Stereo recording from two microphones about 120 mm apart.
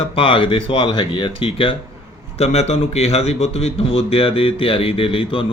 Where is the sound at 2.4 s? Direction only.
60° left (ahead or behind).